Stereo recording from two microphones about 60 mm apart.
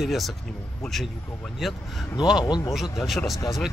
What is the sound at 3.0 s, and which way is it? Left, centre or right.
Speech, centre.